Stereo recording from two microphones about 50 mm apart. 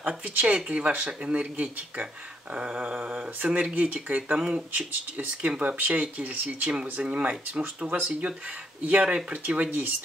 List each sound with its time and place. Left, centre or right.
0.2 s speech: right